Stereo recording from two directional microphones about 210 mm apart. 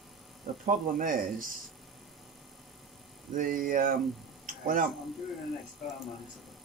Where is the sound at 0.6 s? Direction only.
40° right (ahead or behind).